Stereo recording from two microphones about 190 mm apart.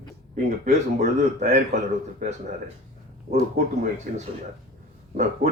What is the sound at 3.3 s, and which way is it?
A man's voice, 40° right (ahead or behind).